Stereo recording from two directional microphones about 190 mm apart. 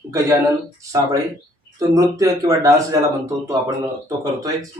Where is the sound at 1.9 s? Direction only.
15° right (ahead or behind).